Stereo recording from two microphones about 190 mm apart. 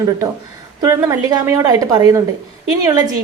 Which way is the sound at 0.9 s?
20° right (ahead or behind).